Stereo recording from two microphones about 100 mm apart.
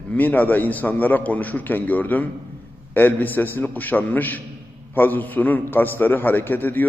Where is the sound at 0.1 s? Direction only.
15° left (ahead or behind).